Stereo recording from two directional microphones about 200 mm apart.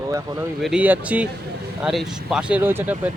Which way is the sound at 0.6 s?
5° right (ahead or behind).